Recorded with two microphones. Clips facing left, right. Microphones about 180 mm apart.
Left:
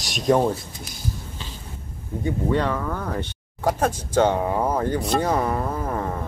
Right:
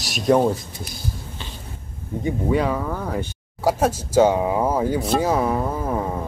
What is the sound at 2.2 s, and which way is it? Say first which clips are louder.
Speech: right 2 dB; 15° right (ahead or behind).